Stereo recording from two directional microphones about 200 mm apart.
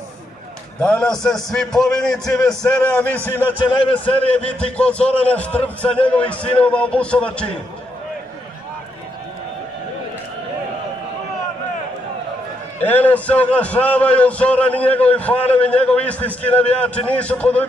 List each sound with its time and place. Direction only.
0.7 s a man's voice: 5° left (ahead or behind)
3.5 s speech: 25° left (ahead or behind)
4.3 s a man's voice: 5° left (ahead or behind)
12.8 s a man's voice: 10° left (ahead or behind)